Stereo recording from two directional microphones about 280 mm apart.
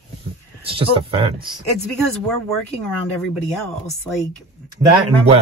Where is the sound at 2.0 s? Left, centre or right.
Centre.